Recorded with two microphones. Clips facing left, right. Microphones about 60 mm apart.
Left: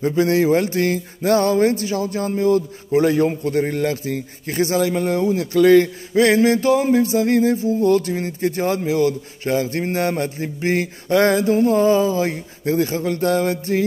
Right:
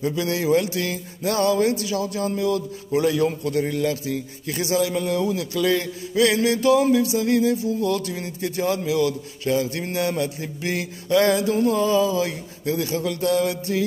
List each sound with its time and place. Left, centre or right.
0.0 s speech: left